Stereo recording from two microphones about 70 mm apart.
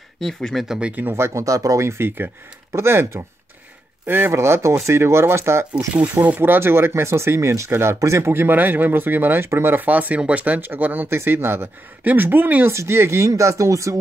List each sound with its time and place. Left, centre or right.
0.2 s speech: centre
0.7 s speech: centre
1.0 s speech: right
4.3 s speech: right
6.2 s speech: right
12.7 s speech: right